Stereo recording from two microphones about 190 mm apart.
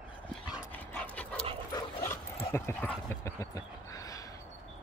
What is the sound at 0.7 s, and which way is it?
Dog, 10° left (ahead or behind).